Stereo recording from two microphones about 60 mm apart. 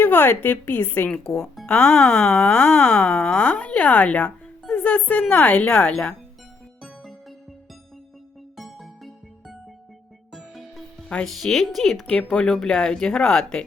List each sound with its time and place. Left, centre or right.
0.0 s a woman's voice: left; by 6.1 s centre
6.8 s music: centre
8.5 s music: centre
11.3 s speech: centre
12.1 s speech: centre